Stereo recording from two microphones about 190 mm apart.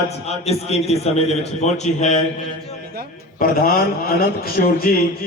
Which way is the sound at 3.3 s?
50° left (ahead or behind).